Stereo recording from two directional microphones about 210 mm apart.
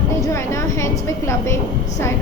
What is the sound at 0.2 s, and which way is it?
A woman's voice, 15° left (ahead or behind).